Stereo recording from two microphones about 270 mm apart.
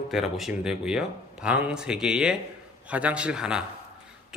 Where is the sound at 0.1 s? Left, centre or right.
Centre.